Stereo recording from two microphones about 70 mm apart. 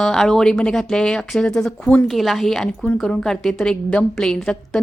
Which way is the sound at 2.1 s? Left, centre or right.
Centre.